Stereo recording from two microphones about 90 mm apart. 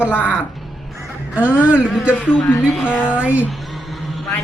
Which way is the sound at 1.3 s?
15° right (ahead or behind).